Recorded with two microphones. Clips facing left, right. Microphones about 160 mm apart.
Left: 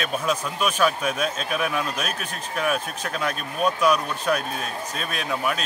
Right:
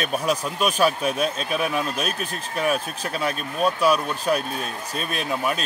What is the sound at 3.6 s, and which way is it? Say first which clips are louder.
Speech: right 1 dB; 35° right (ahead or behind).